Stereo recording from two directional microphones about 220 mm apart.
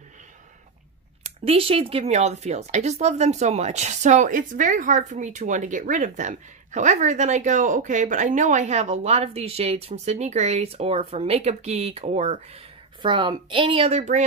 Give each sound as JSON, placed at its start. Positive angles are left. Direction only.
{"t": 1.2, "sound": "speech", "side_deg": -25}